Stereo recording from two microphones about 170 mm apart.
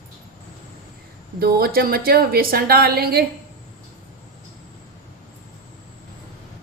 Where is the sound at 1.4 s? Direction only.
65° right (ahead or behind).